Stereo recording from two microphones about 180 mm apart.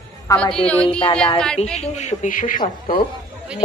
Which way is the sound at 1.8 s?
40° left (ahead or behind).